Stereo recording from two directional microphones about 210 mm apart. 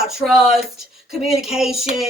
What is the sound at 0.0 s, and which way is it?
A child's voice, centre (ahead or behind).